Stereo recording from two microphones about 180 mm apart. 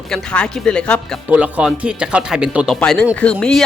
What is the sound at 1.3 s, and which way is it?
Speech, 10° right (ahead or behind).